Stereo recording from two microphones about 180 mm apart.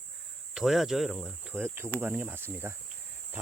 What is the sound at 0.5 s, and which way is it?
Speech, centre (ahead or behind).